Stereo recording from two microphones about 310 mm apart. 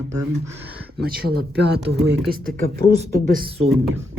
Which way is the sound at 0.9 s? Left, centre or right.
Right.